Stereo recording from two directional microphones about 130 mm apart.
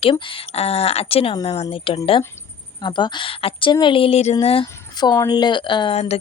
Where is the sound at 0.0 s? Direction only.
40° left (ahead or behind).